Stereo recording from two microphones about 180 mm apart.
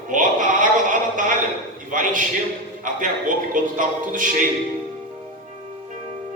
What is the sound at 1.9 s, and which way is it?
A man's voice, 45° right (ahead or behind).